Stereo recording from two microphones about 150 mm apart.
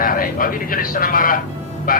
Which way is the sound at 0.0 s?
70° left (ahead or behind).